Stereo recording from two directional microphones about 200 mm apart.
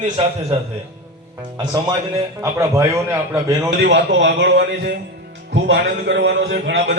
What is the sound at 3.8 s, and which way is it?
A man's voice, 60° right (ahead or behind).